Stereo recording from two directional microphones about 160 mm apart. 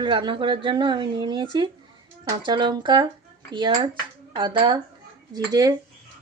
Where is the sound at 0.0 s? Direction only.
30° right (ahead or behind).